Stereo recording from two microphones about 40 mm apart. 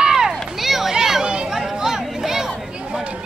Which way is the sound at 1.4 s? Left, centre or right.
Centre.